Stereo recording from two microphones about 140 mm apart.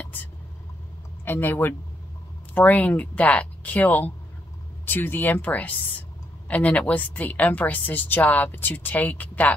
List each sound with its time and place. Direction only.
1.2 s a woman's voice: 15° left (ahead or behind)